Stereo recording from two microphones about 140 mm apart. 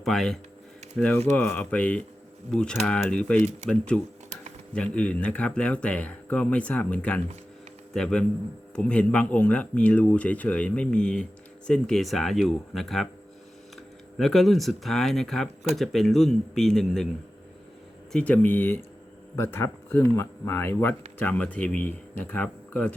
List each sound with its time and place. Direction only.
0.0 s speech: centre (ahead or behind)
14.2 s speech: centre (ahead or behind)
18.1 s speech: 10° left (ahead or behind)